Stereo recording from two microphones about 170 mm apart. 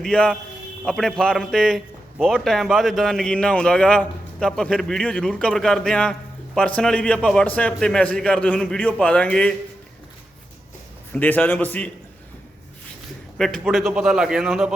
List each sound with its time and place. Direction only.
0.0 s speech: 5° left (ahead or behind)
11.1 s a man's voice: 10° left (ahead or behind)
13.4 s speech: centre (ahead or behind)